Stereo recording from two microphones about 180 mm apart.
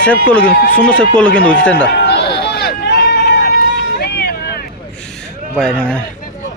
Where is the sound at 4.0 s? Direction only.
60° left (ahead or behind).